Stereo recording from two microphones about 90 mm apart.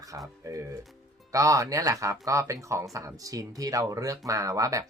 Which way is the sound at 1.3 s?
35° right (ahead or behind).